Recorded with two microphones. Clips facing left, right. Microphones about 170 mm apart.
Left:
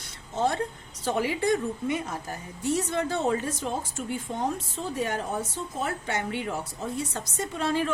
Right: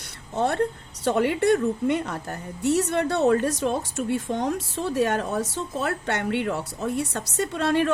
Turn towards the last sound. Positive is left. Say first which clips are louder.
# right 5 dB
turn(degrees=-65)  # may be behind; listen again after turning